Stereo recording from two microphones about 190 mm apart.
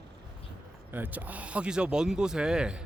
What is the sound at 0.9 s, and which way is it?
Speech, 10° right (ahead or behind).